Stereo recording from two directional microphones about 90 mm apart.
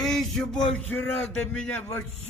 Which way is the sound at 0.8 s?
20° left (ahead or behind).